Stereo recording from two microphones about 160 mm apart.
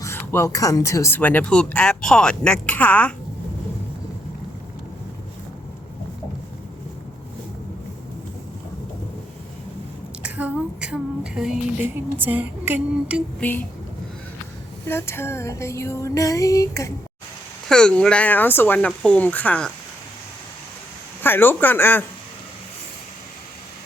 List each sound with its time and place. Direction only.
0.0 s speech: 15° left (ahead or behind)
10.2 s a sound: 10° right (ahead or behind)
13.4 s speech: 10° left (ahead or behind)
14.8 s speech: 15° left (ahead or behind)
17.7 s speech: 5° left (ahead or behind)
21.2 s speech: 15° left (ahead or behind)